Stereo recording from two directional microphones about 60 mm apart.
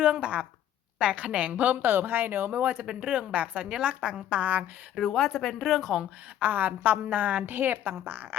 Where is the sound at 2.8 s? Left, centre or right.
Centre.